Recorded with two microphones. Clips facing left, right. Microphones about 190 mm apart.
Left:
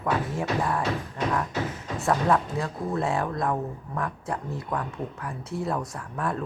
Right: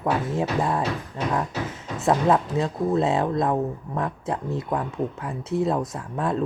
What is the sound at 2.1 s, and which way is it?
Speech, 20° right (ahead or behind).